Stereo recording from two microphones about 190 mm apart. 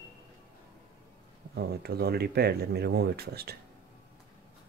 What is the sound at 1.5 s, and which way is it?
Speech, 55° right (ahead or behind).